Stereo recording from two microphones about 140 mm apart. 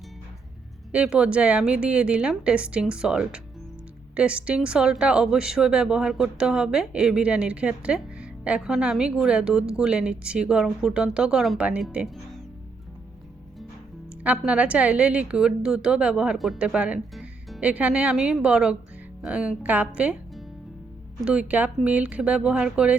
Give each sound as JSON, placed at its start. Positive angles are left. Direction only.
{"t": 0.9, "sound": "a woman's voice", "side_deg": -5}
{"t": 14.3, "sound": "a woman's voice", "side_deg": -10}